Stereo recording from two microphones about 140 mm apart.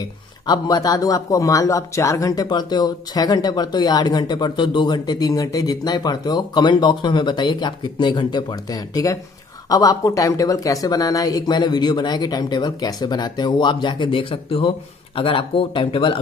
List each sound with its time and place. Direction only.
0.5 s speech: 25° left (ahead or behind)